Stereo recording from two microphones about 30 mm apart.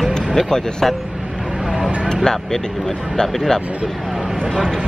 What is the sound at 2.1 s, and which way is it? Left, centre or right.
Speech, centre.